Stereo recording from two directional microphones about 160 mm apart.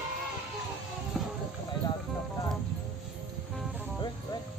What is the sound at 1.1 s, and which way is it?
Music, 5° right (ahead or behind).